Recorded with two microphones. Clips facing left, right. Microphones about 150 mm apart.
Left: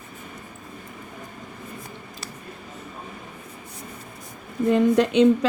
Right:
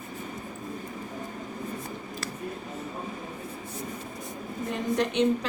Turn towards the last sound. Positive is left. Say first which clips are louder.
# left 8 dB
turn(degrees=90)